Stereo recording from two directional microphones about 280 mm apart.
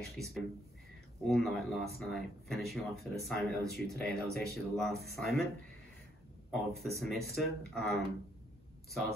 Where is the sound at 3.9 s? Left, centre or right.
Left.